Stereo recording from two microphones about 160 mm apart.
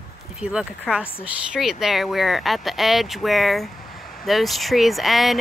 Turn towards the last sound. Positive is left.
turn(degrees=0)  # may be behind; listen again after turning